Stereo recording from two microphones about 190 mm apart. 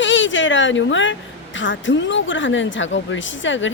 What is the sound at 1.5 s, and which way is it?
A woman's voice, 75° left (ahead or behind).